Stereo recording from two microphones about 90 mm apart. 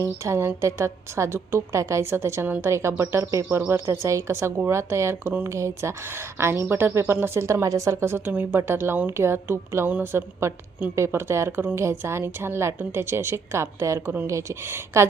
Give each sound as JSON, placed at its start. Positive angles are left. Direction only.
{"t": 0.0, "sound": "a woman's voice", "side_deg": -30}